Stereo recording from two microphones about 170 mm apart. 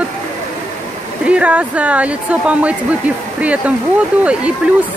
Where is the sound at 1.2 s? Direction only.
5° right (ahead or behind).